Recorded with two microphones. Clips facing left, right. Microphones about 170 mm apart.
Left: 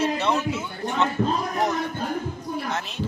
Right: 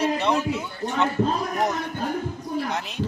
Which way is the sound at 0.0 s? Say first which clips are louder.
Right 1 dB; 15° right (ahead or behind).